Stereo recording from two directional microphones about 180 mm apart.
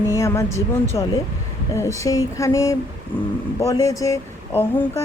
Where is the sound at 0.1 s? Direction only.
15° left (ahead or behind).